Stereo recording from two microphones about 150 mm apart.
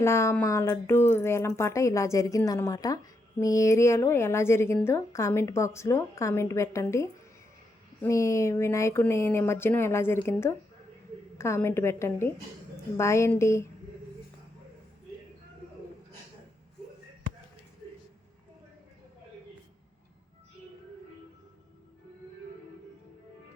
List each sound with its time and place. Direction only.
0.0 s a woman's voice: 20° left (ahead or behind)
11.3 s a woman's voice: 20° left (ahead or behind)